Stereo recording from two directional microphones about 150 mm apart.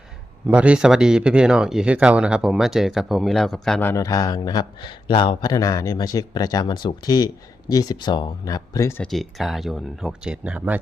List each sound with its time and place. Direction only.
0.4 s speech: 10° right (ahead or behind)
3.8 s speech: 20° left (ahead or behind)
9.0 s speech: centre (ahead or behind)